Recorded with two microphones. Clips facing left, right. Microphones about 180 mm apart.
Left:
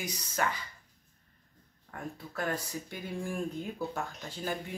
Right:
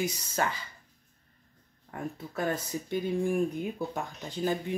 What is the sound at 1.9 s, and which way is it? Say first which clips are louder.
Speech: right 4 dB; 20° right (ahead or behind).